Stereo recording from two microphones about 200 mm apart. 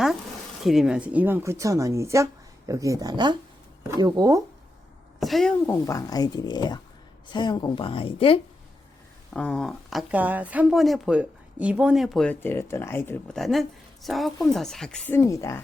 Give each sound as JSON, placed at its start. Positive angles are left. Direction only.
{"t": 0.6, "sound": "speech", "side_deg": 0}
{"t": 5.2, "sound": "speech", "side_deg": 0}
{"t": 5.8, "sound": "a woman's voice", "side_deg": 20}
{"t": 9.3, "sound": "speech", "side_deg": 5}